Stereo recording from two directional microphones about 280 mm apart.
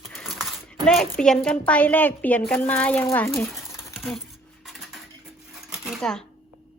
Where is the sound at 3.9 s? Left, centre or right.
Centre.